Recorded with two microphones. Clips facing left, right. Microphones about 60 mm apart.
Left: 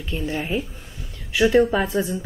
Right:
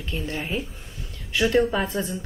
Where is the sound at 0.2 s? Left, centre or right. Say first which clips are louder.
Left 5 dB; centre.